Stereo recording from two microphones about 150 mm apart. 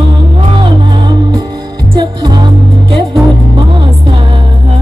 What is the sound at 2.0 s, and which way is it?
Music, 30° right (ahead or behind).